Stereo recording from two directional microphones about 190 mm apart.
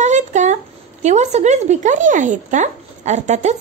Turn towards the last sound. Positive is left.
turn(degrees=-35)  # may be behind; listen again after turning